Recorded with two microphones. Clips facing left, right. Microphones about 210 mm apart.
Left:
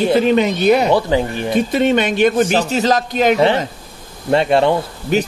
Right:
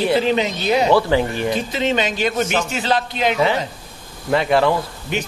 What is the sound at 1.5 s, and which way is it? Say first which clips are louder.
Speech: left 10 dB; 55° left (ahead or behind).